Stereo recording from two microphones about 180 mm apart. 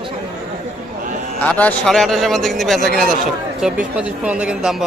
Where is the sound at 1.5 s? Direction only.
5° left (ahead or behind).